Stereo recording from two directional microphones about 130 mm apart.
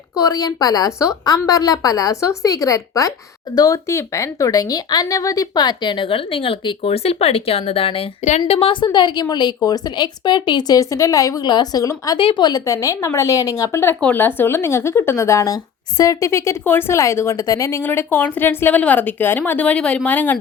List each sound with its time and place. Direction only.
0.2 s a woman's voice: 30° left (ahead or behind)
12.2 s a woman's voice: 35° left (ahead or behind); by 20.4 s 10° left (ahead or behind)